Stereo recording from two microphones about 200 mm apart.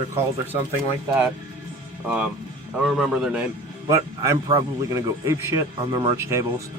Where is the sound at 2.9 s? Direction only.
5° right (ahead or behind).